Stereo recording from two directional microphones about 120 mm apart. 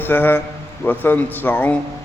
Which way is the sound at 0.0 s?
15° left (ahead or behind).